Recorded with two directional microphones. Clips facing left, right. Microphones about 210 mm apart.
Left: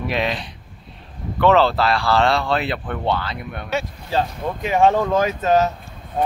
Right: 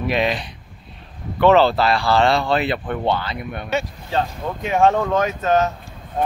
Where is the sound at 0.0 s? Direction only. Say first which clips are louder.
Right 2 dB; centre (ahead or behind).